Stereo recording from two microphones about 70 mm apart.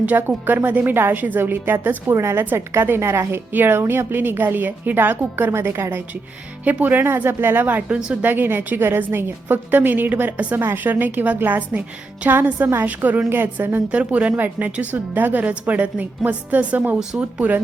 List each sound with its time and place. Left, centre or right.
0.0 s a woman's voice: right
7.9 s a woman's voice: centre
8.2 s a woman's voice: right
13.9 s a woman's voice: centre